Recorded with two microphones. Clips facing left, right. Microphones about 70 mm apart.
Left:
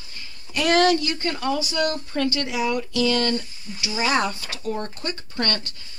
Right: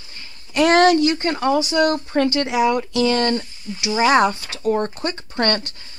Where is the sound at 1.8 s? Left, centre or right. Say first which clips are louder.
Right 6 dB; right.